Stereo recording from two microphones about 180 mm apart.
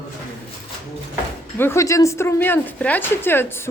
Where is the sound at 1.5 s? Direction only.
15° left (ahead or behind).